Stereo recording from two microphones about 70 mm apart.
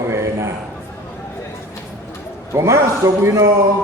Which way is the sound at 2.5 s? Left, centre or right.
Right.